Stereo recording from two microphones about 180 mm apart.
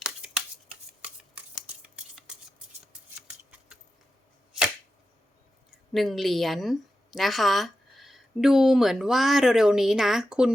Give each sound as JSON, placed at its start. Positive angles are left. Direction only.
{"t": 0.0, "sound": "shuffling cards", "side_deg": -5}
{"t": 5.9, "sound": "a woman's voice", "side_deg": 0}